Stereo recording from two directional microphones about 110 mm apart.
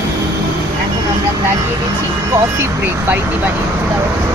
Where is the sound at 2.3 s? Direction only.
20° right (ahead or behind).